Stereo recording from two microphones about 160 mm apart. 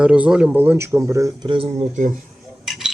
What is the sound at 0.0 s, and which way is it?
Speech, 5° right (ahead or behind).